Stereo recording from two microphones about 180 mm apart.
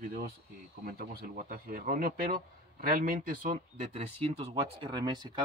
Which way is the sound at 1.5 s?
55° right (ahead or behind).